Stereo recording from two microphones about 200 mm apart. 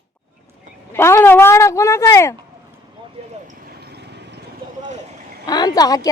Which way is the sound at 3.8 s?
55° right (ahead or behind).